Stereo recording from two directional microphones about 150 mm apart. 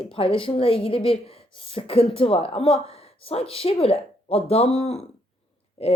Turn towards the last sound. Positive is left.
turn(degrees=40)  # may be behind; listen again after turning